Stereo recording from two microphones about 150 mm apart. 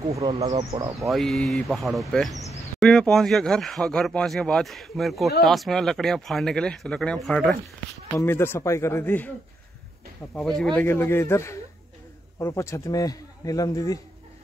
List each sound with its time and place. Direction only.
0.2 s speech: 35° right (ahead or behind)
0.7 s speech: 20° right (ahead or behind)
1.1 s speech: centre (ahead or behind)
8.2 s speech: 15° left (ahead or behind)
10.3 s a man's voice: 5° left (ahead or behind); by 13.9 s 25° left (ahead or behind)